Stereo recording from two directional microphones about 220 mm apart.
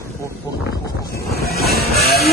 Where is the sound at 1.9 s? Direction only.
45° left (ahead or behind).